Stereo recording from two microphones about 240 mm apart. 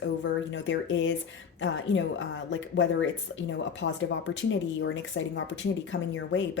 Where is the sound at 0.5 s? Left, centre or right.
Left.